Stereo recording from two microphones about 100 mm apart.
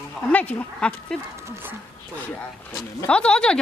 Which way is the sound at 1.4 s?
20° right (ahead or behind).